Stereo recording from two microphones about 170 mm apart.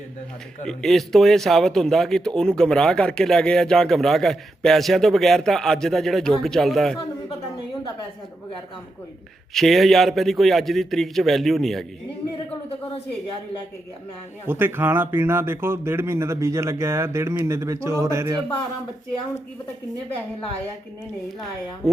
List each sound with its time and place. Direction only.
0.6 s speech: 5° left (ahead or behind)
9.6 s speech: centre (ahead or behind)
14.4 s speech: 15° right (ahead or behind)